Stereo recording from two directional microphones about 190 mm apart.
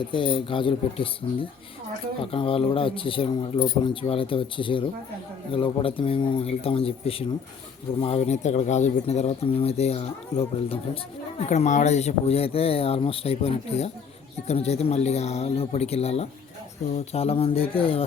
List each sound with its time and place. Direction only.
0.1 s speech: 25° left (ahead or behind)